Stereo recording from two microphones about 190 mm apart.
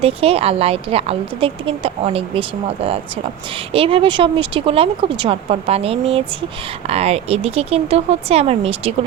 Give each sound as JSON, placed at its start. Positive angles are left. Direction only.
{"t": 0.0, "sound": "a woman's voice", "side_deg": -30}